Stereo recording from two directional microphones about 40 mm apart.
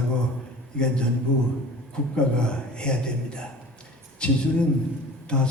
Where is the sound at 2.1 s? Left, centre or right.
Left.